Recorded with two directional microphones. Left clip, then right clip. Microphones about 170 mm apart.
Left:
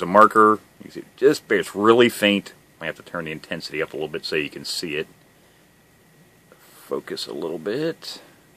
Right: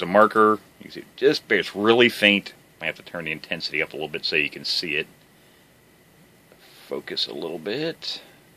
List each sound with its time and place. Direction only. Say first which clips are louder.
0.0 s speech: left 3 dB; 25° left (ahead or behind)
6.9 s speech: even; 30° left (ahead or behind)